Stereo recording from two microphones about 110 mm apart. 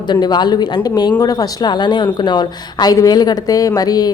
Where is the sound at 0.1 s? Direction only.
40° left (ahead or behind).